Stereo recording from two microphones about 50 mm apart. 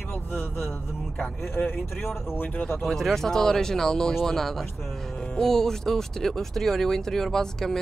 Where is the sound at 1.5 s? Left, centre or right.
Left.